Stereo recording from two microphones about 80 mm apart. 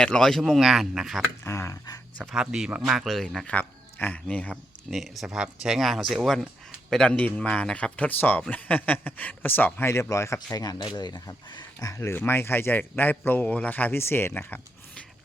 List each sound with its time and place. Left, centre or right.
0.0 s speech: centre
1.5 s speech: left
2.3 s speech: centre
3.4 s speech: centre
4.9 s speech: centre; by 9.9 s left
9.9 s speech: left
10.8 s speech: left
11.8 s speech: left
12.1 s speech: left